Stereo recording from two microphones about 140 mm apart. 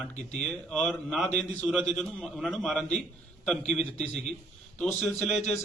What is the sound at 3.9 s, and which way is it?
Speech, 55° left (ahead or behind).